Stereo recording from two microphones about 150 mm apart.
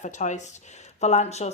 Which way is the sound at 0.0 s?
55° left (ahead or behind).